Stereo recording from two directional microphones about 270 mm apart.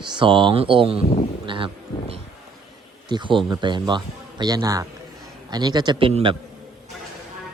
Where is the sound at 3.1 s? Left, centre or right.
Centre.